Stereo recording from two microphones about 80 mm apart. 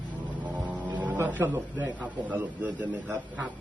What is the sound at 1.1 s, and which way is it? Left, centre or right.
Speech, right.